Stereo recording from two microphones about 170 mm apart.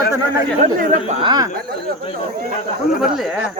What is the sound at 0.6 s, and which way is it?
Speech, 50° right (ahead or behind).